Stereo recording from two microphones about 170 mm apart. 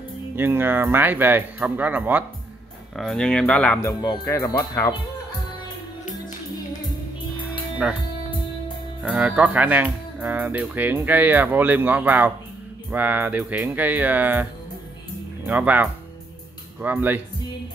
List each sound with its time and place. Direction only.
0.4 s speech: 10° right (ahead or behind)
3.0 s speech: 5° left (ahead or behind)
4.0 s speech: 20° left (ahead or behind)
7.8 s speech: 5° right (ahead or behind)
9.0 s speech: 10° right (ahead or behind)